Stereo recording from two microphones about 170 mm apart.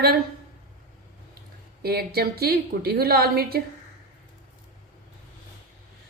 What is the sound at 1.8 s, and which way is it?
A woman's voice, 65° right (ahead or behind).